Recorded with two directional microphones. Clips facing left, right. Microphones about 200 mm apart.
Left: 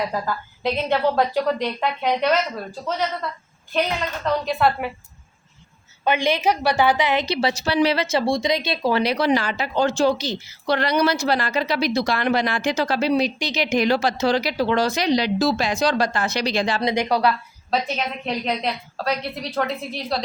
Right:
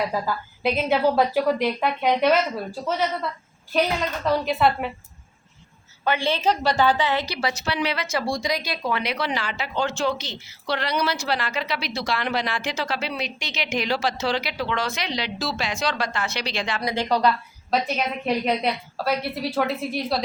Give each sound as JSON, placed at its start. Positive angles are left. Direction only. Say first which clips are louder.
{"t": 0.1, "sound": "a woman's voice", "louder": "even", "side_deg": -5}
{"t": 4.3, "sound": "a woman's voice", "louder": "even", "side_deg": -5}
{"t": 6.1, "sound": "a woman's voice", "louder": "left 2 dB", "side_deg": 15}
{"t": 7.5, "sound": "speech", "louder": "left 7 dB", "side_deg": 35}
{"t": 16.8, "sound": "a woman's voice", "louder": "right 1 dB", "side_deg": 15}